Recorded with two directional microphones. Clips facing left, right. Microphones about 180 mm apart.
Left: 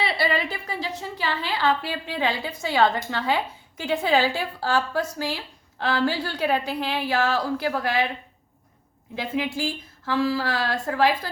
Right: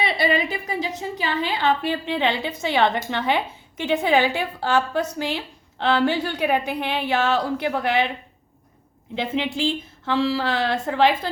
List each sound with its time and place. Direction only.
0.0 s a woman's voice: 20° right (ahead or behind)
9.1 s a woman's voice: 25° right (ahead or behind)